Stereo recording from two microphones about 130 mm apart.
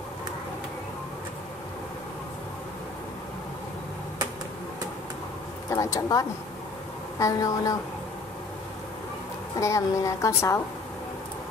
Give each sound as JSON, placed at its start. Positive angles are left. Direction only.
{"t": 5.7, "sound": "a woman's voice", "side_deg": 25}
{"t": 9.6, "sound": "a woman's voice", "side_deg": 25}